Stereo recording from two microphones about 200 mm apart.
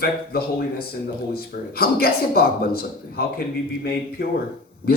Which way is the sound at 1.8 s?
50° left (ahead or behind).